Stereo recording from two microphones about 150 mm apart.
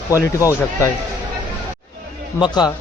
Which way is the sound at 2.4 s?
25° left (ahead or behind).